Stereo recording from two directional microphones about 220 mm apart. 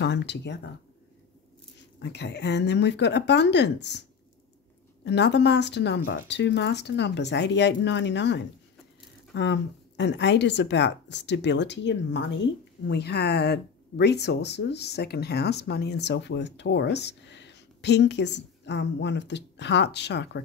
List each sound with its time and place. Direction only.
0.0 s speech: 50° left (ahead or behind)
2.0 s speech: 50° left (ahead or behind)
5.0 s speech: 50° left (ahead or behind)